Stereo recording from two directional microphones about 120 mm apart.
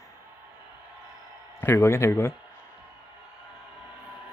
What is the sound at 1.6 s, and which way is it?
Speech, 20° left (ahead or behind).